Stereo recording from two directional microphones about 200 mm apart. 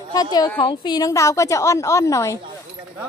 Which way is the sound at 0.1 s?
20° left (ahead or behind).